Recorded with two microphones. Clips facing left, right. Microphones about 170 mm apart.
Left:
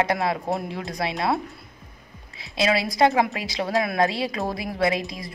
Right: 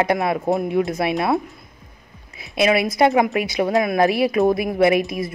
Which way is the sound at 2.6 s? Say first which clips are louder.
Right 4 dB; 20° right (ahead or behind).